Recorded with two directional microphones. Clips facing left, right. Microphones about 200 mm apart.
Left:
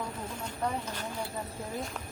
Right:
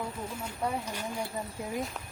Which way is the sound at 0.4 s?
10° right (ahead or behind).